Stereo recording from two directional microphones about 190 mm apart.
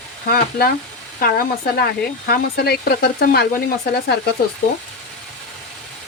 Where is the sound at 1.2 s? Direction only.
50° left (ahead or behind).